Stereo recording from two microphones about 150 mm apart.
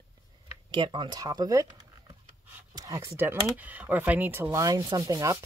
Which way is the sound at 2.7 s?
20° right (ahead or behind).